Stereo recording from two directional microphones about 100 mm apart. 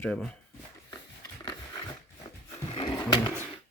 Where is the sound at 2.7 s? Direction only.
60° left (ahead or behind).